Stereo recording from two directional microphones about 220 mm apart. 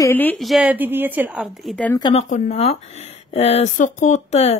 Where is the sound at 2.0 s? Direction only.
20° left (ahead or behind).